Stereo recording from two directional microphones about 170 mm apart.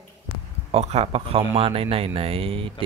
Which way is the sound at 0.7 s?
35° right (ahead or behind).